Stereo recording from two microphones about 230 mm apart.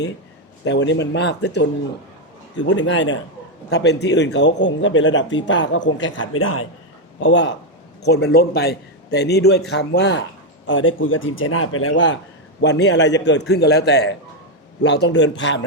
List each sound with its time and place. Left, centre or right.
0.6 s a man's voice: left
2.7 s a man's voice: left
7.2 s a man's voice: left